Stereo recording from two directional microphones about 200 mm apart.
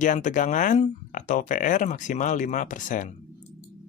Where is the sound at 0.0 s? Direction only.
40° left (ahead or behind).